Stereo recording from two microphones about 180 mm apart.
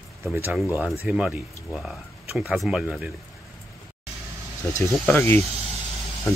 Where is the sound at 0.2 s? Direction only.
5° right (ahead or behind).